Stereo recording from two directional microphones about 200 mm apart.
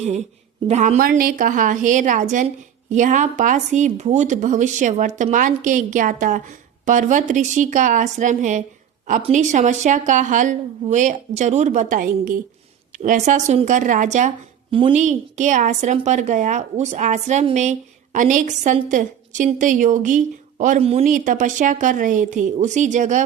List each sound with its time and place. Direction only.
0.7 s a woman's voice: 35° right (ahead or behind)